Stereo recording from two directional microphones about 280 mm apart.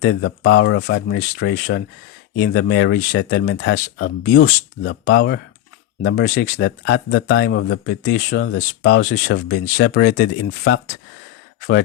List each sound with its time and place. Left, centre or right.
0.0 s speech: left
4.8 s speech: left
7.3 s speech: left
9.0 s speech: left